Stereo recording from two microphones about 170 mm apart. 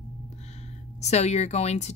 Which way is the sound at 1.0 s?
40° left (ahead or behind).